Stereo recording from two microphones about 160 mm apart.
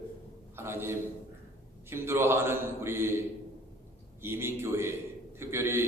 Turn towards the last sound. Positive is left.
turn(degrees=-15)  # may be behind; listen again after turning